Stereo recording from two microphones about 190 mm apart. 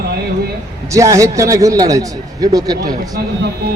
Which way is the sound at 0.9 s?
15° right (ahead or behind).